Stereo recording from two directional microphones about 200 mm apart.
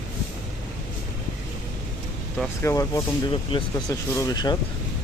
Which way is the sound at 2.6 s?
15° left (ahead or behind).